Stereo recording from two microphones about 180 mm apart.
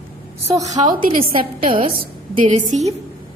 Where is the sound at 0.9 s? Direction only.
50° right (ahead or behind).